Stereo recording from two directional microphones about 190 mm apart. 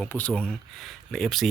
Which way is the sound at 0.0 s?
5° left (ahead or behind).